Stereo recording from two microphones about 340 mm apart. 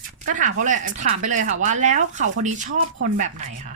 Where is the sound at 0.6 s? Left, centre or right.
Right.